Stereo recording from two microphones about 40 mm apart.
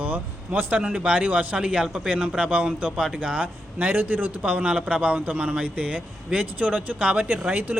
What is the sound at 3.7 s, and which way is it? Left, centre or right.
Speech, right.